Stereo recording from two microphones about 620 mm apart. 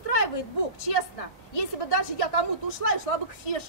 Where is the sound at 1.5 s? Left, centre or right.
Left.